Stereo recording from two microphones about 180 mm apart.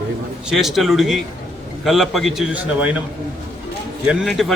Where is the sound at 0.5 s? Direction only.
Centre (ahead or behind).